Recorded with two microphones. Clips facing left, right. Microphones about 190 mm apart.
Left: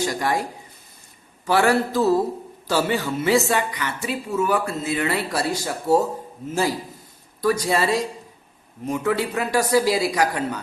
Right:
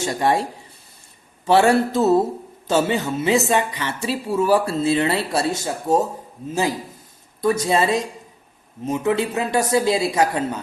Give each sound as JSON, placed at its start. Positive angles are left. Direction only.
{"t": 0.0, "sound": "a woman's voice", "side_deg": -25}
{"t": 1.5, "sound": "a woman's voice", "side_deg": -25}